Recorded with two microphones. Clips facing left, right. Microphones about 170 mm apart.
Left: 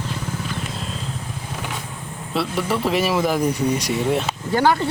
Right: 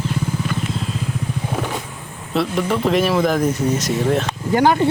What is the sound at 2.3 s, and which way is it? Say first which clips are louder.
Speech: right 3 dB; 5° left (ahead or behind).